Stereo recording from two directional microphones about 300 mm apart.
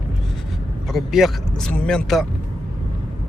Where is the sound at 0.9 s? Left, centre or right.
Centre.